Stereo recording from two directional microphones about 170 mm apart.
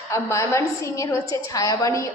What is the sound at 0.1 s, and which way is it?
A woman's voice, 15° left (ahead or behind).